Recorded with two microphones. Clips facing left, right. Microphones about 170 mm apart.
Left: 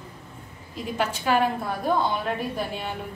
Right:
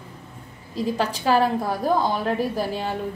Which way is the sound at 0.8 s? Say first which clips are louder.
Right 4 dB; 35° right (ahead or behind).